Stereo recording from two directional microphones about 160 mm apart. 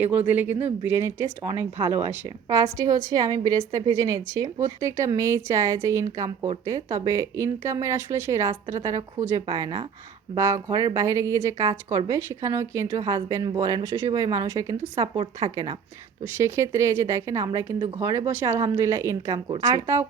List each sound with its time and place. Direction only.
0.3 s a woman's voice: 10° right (ahead or behind)